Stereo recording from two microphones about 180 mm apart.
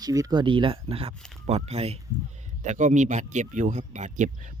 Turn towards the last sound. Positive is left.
turn(degrees=-45)  # may be behind; listen again after turning